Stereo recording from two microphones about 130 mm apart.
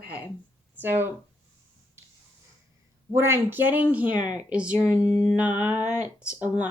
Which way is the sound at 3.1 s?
20° right (ahead or behind).